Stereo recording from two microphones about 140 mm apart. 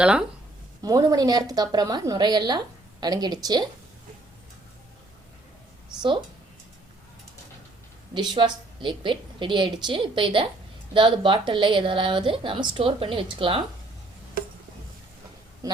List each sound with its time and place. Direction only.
0.0 s speech: 5° right (ahead or behind)
0.8 s a woman's voice: 25° right (ahead or behind)
8.1 s a woman's voice: 35° right (ahead or behind)
15.6 s speech: 25° right (ahead or behind)